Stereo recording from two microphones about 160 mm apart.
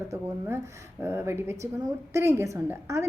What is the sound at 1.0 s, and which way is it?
A woman's voice, 15° right (ahead or behind).